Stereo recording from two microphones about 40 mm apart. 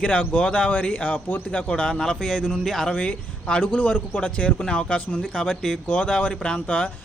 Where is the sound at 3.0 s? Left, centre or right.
Left.